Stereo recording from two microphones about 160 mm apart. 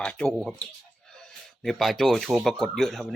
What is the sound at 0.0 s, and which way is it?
A man's voice, 5° left (ahead or behind).